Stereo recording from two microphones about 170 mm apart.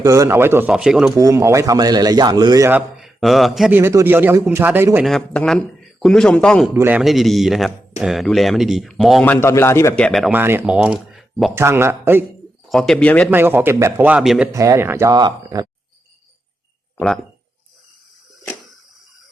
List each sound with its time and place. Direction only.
0.0 s speech: 20° right (ahead or behind)
1.1 s a man's voice: 20° right (ahead or behind)
3.0 s a man's voice: centre (ahead or behind)
3.8 s speech: 15° right (ahead or behind)
5.0 s a man's voice: 5° left (ahead or behind)
6.7 s speech: 10° right (ahead or behind)
7.0 s a man's voice: centre (ahead or behind)
9.2 s a man's voice: 10° left (ahead or behind)
10.3 s speech: 15° right (ahead or behind)
11.5 s speech: 15° right (ahead or behind)
12.6 s speech: centre (ahead or behind)
13.3 s speech: 10° right (ahead or behind)
14.5 s a man's voice: 20° right (ahead or behind)